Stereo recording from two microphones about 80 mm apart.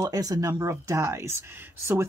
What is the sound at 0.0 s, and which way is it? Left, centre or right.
Speech, right.